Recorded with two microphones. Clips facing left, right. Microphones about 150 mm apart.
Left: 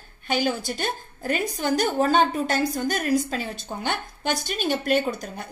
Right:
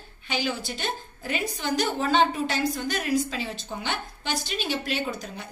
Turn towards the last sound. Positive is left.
turn(degrees=50)  # may be behind; listen again after turning